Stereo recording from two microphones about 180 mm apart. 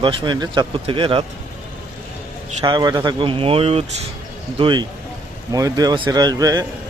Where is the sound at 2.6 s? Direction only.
25° right (ahead or behind).